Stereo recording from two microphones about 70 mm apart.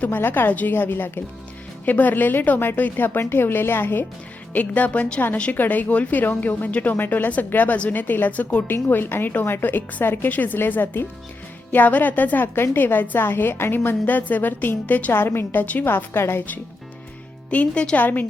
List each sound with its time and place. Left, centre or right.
0.0 s a woman's voice: left
4.5 s a woman's voice: left
17.5 s a woman's voice: centre